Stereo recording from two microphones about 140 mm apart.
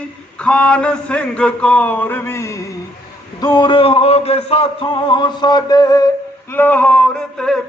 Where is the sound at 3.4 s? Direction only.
35° left (ahead or behind).